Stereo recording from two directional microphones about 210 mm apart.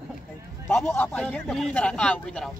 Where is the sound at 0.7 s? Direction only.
5° left (ahead or behind).